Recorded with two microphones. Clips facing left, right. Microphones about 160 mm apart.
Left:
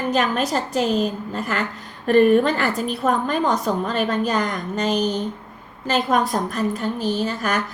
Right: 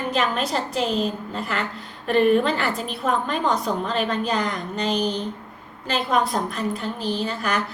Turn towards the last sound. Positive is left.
turn(degrees=45)  # may be behind; listen again after turning